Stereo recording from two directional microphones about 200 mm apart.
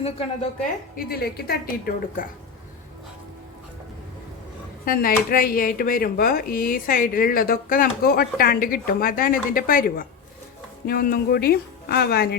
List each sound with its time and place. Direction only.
0.9 s speech: 50° left (ahead or behind)
4.9 s speech: 45° left (ahead or behind)